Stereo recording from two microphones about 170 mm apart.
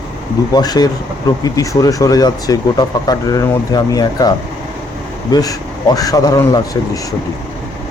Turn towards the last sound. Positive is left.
turn(degrees=20)  # may be behind; listen again after turning